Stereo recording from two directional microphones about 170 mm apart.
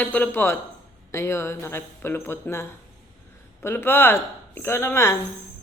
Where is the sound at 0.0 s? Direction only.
10° left (ahead or behind).